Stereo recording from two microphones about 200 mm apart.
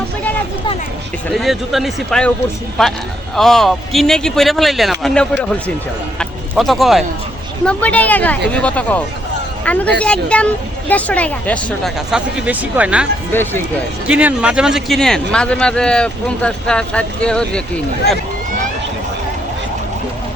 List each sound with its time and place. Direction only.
1.3 s speech: centre (ahead or behind)
13.3 s speech: 10° left (ahead or behind)
14.1 s speech: 5° right (ahead or behind)